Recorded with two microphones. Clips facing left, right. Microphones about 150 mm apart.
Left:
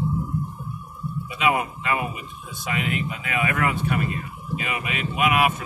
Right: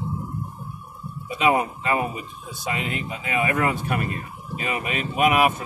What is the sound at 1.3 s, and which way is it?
Speech, 35° right (ahead or behind).